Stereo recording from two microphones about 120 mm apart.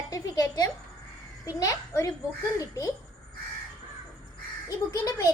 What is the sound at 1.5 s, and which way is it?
A woman's voice, 30° left (ahead or behind).